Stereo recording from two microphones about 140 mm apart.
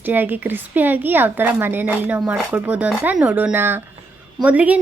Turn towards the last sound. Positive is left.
turn(degrees=-10)  # may be behind; listen again after turning